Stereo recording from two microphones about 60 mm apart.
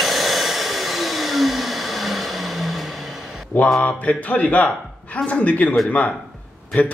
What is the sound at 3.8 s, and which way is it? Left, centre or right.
A man's voice, left.